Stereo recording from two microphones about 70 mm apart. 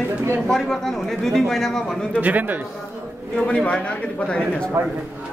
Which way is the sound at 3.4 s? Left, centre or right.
Centre.